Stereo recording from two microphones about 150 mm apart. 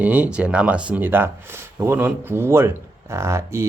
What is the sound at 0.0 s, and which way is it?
Speech, 10° right (ahead or behind).